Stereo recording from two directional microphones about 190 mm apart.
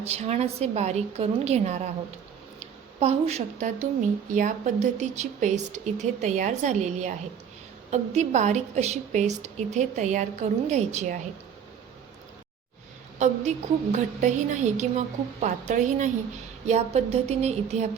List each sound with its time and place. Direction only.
0.0 s a woman's voice: 35° right (ahead or behind)
13.1 s a woman's voice: 40° right (ahead or behind)